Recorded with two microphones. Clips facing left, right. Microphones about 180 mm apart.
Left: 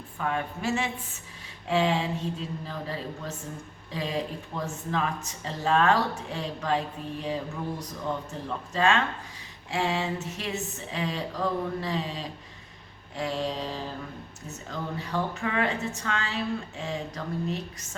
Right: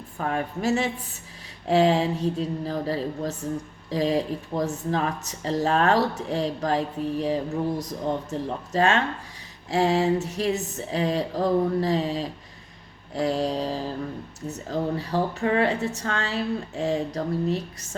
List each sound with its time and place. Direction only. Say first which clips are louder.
0.2 s speech: right 3 dB; 40° right (ahead or behind)